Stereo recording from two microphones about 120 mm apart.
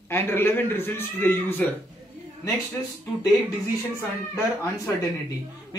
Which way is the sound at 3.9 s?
20° left (ahead or behind).